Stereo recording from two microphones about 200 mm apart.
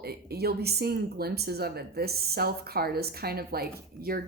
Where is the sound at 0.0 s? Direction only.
50° right (ahead or behind).